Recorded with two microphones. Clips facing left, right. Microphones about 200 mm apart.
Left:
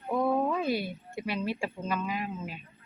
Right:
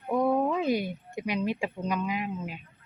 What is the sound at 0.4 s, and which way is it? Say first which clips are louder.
Speech: right 2 dB; 15° right (ahead or behind).